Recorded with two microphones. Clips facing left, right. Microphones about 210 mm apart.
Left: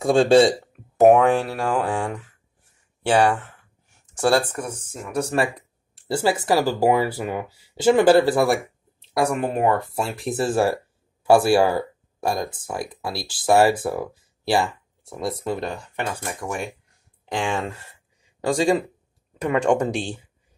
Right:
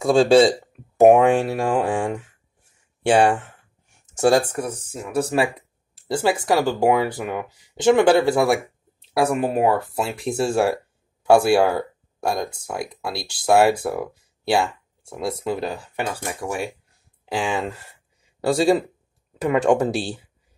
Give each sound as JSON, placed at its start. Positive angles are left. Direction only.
{"t": 0.0, "sound": "speech", "side_deg": 0}
{"t": 1.0, "sound": "speech", "side_deg": -15}
{"t": 3.1, "sound": "speech", "side_deg": -15}
{"t": 17.3, "sound": "speech", "side_deg": -5}